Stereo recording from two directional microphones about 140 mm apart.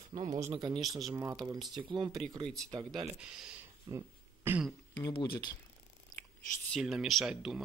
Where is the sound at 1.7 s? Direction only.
35° right (ahead or behind).